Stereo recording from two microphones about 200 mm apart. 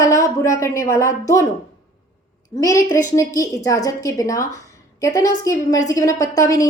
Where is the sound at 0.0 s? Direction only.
15° left (ahead or behind).